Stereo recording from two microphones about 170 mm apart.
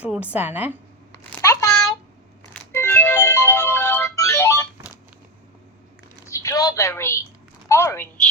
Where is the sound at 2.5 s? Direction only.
15° left (ahead or behind).